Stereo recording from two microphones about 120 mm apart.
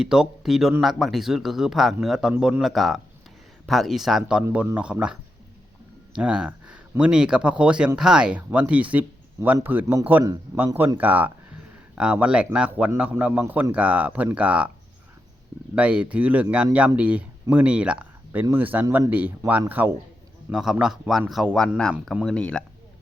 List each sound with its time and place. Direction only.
0.0 s a man's voice: 5° right (ahead or behind)
6.1 s speech: 5° right (ahead or behind)
10.2 s a man's voice: 25° right (ahead or behind)
15.7 s speech: 10° right (ahead or behind)
20.5 s a man's voice: 5° right (ahead or behind)